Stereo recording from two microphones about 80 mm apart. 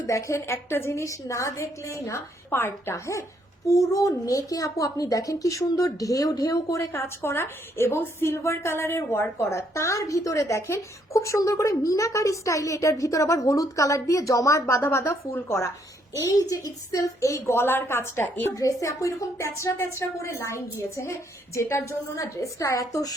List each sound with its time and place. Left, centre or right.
0.1 s a woman's voice: left
6.9 s a woman's voice: left
18.5 s a woman's voice: left